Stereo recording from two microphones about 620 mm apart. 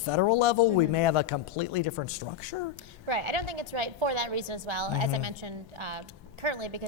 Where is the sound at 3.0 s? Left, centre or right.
Right.